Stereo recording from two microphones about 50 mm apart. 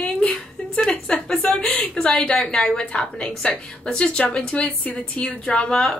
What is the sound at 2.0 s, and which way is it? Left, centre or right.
A woman's voice, centre.